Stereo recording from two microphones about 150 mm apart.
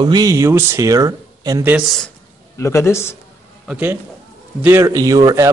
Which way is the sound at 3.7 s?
10° right (ahead or behind).